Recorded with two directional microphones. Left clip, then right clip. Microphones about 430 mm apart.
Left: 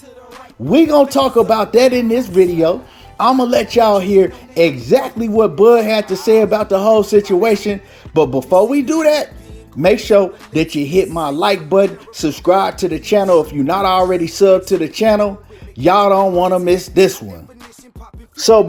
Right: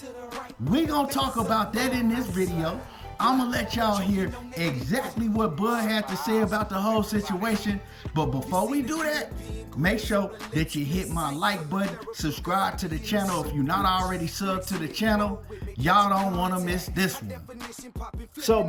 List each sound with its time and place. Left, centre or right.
0.3 s speech: centre